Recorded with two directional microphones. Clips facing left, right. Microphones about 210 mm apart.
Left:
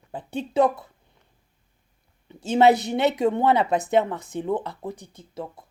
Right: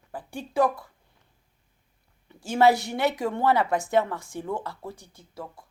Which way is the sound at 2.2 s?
20° left (ahead or behind).